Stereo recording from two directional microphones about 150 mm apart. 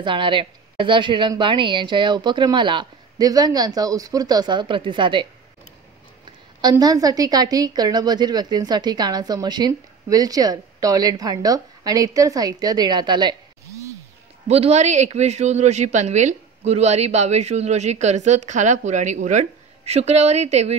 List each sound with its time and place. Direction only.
0.0 s a woman's voice: 35° right (ahead or behind)
6.6 s a woman's voice: 25° right (ahead or behind)
14.5 s speech: 45° right (ahead or behind)